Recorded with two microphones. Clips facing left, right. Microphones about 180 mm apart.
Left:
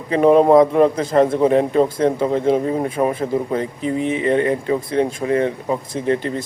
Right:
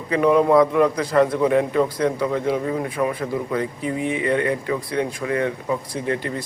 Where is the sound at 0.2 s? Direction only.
35° left (ahead or behind).